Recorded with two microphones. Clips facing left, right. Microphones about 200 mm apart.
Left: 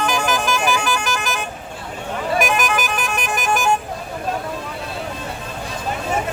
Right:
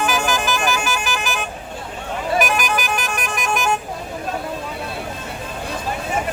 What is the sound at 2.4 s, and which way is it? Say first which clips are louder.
Music: left 1 dB; centre (ahead or behind).